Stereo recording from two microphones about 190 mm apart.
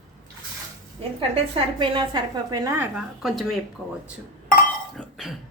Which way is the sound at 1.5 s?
25° right (ahead or behind).